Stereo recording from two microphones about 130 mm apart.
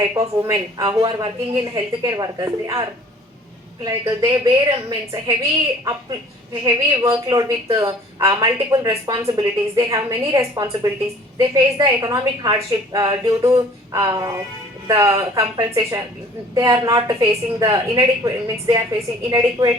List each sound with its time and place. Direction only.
0.4 s speech: 20° right (ahead or behind)
3.8 s speech: 25° right (ahead or behind)
6.5 s a woman's voice: 35° right (ahead or behind)